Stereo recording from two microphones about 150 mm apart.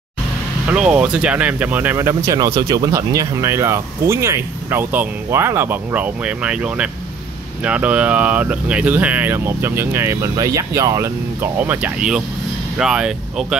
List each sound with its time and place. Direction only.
0.7 s speech: 10° right (ahead or behind)